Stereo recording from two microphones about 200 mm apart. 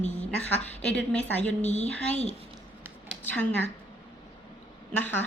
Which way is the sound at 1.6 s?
35° left (ahead or behind).